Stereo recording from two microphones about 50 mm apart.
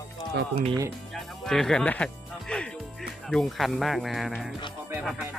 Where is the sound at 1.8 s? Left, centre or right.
Left.